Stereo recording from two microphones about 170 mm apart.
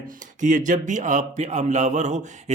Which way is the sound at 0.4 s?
50° right (ahead or behind).